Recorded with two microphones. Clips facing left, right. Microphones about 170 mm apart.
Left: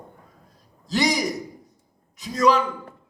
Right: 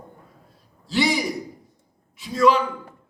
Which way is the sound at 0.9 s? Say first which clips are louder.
Even; 40° left (ahead or behind).